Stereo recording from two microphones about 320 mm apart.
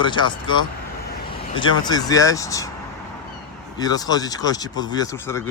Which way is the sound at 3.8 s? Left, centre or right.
Centre.